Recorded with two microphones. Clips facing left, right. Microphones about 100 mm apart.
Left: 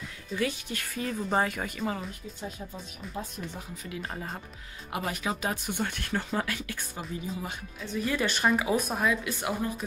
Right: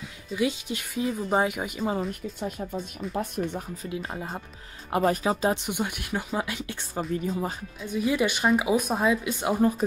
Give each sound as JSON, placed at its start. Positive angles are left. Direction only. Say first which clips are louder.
{"t": 0.4, "sound": "speech", "louder": "right 4 dB", "side_deg": -15}
{"t": 1.8, "sound": "speech", "louder": "right 6 dB", "side_deg": -30}
{"t": 3.1, "sound": "speech", "louder": "right 8 dB", "side_deg": -70}
{"t": 3.7, "sound": "speech", "louder": "right 4 dB", "side_deg": -35}
{"t": 7.0, "sound": "speech", "louder": "right 9 dB", "side_deg": -35}
{"t": 7.8, "sound": "speech", "louder": "right 4 dB", "side_deg": -15}
{"t": 9.5, "sound": "speech", "louder": "right 10 dB", "side_deg": -30}